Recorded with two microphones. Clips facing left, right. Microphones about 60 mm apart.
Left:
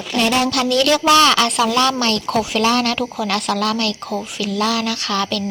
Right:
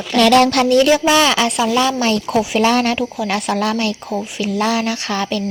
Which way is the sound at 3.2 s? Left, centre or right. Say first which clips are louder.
Left 1 dB; centre.